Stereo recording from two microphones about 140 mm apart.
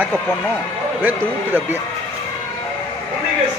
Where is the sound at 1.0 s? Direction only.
10° right (ahead or behind).